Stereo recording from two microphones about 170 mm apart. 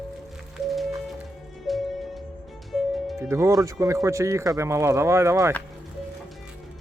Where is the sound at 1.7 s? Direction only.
Centre (ahead or behind).